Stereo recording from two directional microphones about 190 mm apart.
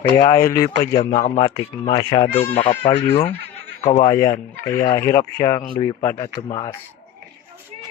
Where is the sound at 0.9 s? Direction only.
35° left (ahead or behind).